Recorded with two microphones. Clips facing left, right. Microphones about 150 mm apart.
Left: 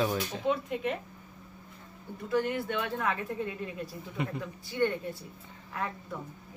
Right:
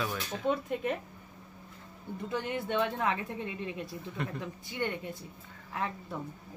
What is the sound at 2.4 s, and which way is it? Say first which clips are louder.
Speech: right 1 dB; 20° right (ahead or behind).